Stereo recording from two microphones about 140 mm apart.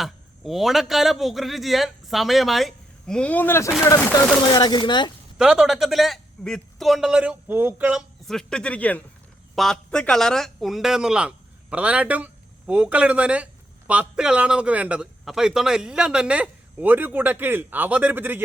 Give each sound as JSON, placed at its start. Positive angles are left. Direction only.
{"t": 0.0, "sound": "a man's voice", "side_deg": 0}
{"t": 4.5, "sound": "speech", "side_deg": 30}
{"t": 5.4, "sound": "a man's voice", "side_deg": -5}
{"t": 8.3, "sound": "speech", "side_deg": 5}